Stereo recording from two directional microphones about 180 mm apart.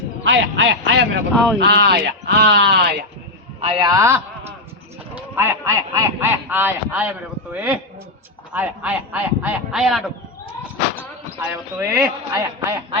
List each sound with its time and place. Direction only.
0.3 s speech: 85° right; by 3.0 s 65° right (ahead or behind)
3.6 s a man's voice: 30° right (ahead or behind); by 10.0 s centre (ahead or behind)
11.8 s speech: 15° right (ahead or behind)